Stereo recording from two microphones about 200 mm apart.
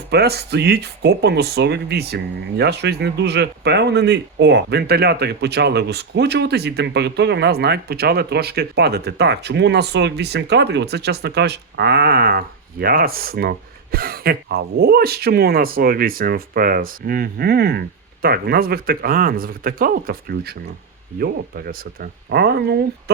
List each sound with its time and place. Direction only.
0.1 s speech: 55° right (ahead or behind)